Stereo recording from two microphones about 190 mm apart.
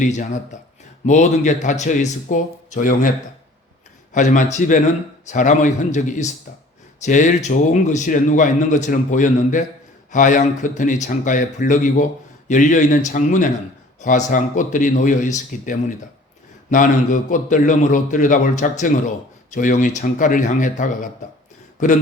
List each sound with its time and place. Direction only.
0.0 s a man's voice: 40° left (ahead or behind)
4.1 s a man's voice: 40° left (ahead or behind)